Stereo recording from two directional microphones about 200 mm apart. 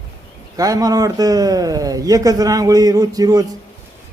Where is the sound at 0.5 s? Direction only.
20° right (ahead or behind).